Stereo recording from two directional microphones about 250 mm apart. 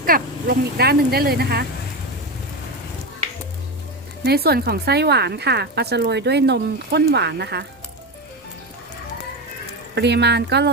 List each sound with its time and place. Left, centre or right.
0.0 s speech: right
4.2 s speech: right
9.9 s speech: right